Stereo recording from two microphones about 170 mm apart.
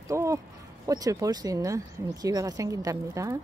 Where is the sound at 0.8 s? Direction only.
20° right (ahead or behind).